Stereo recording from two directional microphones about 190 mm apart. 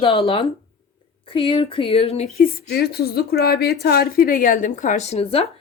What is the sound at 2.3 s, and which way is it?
A woman's voice, 55° left (ahead or behind).